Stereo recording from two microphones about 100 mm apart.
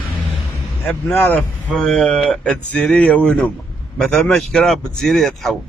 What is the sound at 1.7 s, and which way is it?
Speech, 5° left (ahead or behind).